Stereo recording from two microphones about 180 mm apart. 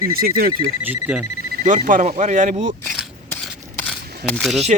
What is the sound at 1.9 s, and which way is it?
Speech, 45° right (ahead or behind).